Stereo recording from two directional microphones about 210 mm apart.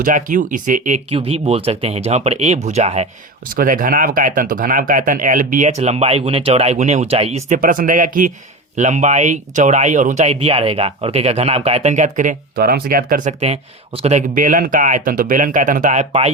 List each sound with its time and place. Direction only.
0.0 s speech: 40° right (ahead or behind)